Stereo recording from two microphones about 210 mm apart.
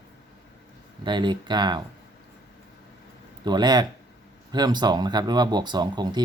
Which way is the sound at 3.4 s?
20° right (ahead or behind).